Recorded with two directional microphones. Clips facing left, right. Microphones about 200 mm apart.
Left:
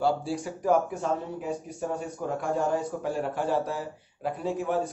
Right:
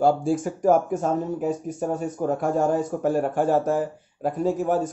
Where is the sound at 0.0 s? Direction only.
50° right (ahead or behind).